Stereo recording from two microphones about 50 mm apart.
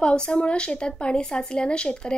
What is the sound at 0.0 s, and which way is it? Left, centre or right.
Speech, centre.